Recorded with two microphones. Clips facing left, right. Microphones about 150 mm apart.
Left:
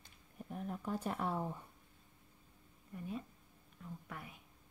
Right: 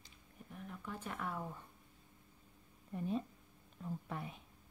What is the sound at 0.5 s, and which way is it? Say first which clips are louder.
Speech: left 7 dB; 40° left (ahead or behind).